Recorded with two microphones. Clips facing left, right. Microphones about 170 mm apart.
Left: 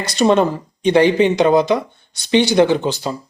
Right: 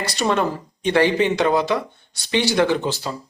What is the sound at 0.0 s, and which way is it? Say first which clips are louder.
Speech: left 6 dB; 20° left (ahead or behind).